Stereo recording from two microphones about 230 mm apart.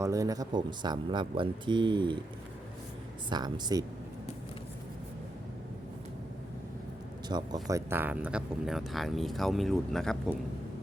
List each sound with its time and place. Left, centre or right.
0.0 s speech: centre
3.2 s speech: centre
7.3 s speech: centre